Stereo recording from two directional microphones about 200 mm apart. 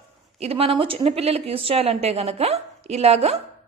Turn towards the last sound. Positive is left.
turn(degrees=-30)  # may be behind; listen again after turning